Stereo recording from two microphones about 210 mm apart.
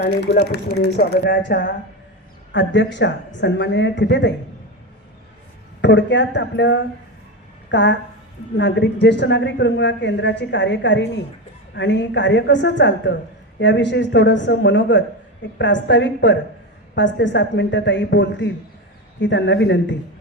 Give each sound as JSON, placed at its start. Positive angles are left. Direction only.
{"t": 0.9, "sound": "a woman's voice", "side_deg": 50}
{"t": 5.8, "sound": "a woman's voice", "side_deg": 55}